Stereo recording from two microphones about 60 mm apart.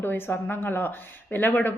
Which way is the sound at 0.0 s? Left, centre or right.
Left.